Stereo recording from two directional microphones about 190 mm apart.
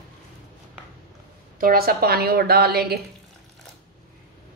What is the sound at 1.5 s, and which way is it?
A woman's voice, 50° right (ahead or behind).